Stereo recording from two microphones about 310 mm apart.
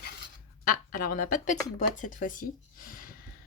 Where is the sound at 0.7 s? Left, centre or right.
Left.